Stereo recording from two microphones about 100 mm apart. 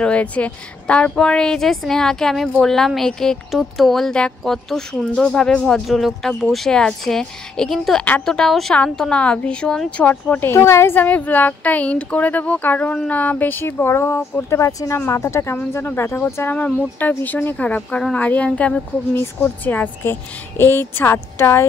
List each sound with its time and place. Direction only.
0.0 s a woman's voice: 15° left (ahead or behind)
5.9 s a woman's voice: centre (ahead or behind); by 16.5 s 25° left (ahead or behind)
16.5 s a woman's voice: 10° left (ahead or behind)